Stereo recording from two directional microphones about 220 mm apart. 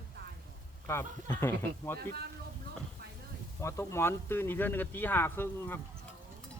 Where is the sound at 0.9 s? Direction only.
10° left (ahead or behind).